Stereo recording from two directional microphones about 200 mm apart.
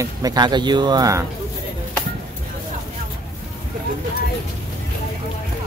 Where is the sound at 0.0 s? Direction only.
20° right (ahead or behind).